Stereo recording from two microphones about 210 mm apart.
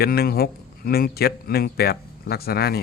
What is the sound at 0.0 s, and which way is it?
Speech, 45° left (ahead or behind).